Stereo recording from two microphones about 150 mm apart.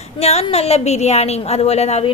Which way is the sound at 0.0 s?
45° left (ahead or behind).